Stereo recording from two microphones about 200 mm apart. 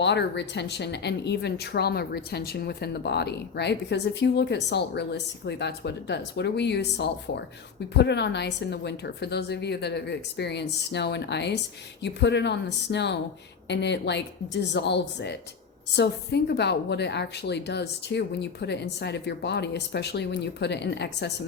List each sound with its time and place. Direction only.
0.0 s a woman's voice: 60° left (ahead or behind)